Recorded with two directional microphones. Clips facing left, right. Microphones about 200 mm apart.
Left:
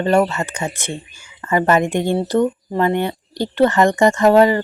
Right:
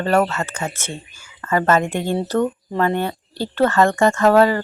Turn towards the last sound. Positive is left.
turn(degrees=15)  # may be behind; listen again after turning